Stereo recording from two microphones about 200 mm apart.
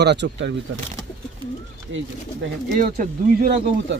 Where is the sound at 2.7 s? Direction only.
45° right (ahead or behind).